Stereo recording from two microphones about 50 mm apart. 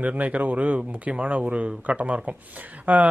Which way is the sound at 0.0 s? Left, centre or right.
Right.